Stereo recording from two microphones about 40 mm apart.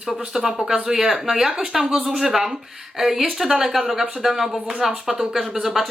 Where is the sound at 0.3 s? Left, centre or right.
Centre.